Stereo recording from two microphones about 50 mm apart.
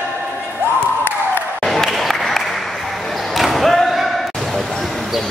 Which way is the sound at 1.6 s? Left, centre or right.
Centre.